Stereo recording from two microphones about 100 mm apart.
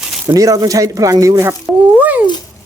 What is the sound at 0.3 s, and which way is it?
Speech, 35° right (ahead or behind).